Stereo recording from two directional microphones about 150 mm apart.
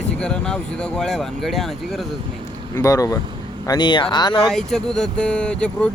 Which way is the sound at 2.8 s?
20° left (ahead or behind).